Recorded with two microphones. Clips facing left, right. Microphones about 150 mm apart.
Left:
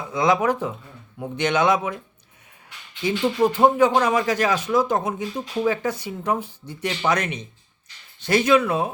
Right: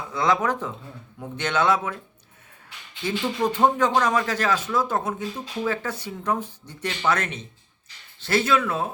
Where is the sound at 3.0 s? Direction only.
10° left (ahead or behind).